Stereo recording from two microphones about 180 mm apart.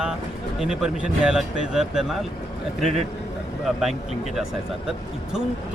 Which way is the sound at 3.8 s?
Centre (ahead or behind).